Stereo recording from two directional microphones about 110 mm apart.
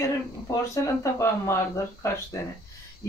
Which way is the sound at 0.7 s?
25° left (ahead or behind).